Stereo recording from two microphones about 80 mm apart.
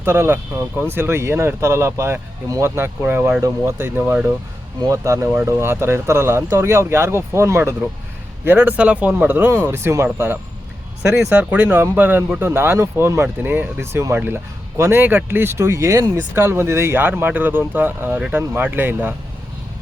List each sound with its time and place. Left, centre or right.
0.0 s speech: right
4.8 s speech: right
8.4 s speech: right
13.2 s speech: right